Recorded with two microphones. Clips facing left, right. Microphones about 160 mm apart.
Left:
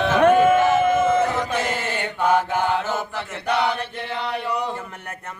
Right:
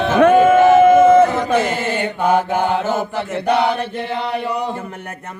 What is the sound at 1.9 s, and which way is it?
Mantra, 15° right (ahead or behind).